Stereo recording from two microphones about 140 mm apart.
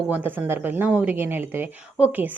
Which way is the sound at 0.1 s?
15° right (ahead or behind).